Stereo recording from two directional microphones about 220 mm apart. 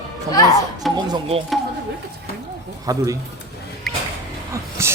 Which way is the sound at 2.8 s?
15° right (ahead or behind).